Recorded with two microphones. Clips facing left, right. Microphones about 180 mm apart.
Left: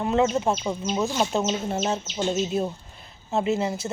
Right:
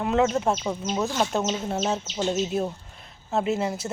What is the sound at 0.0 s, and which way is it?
Speech, centre (ahead or behind).